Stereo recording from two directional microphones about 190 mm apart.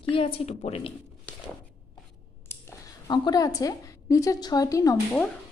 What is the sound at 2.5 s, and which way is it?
A woman's voice, 15° left (ahead or behind).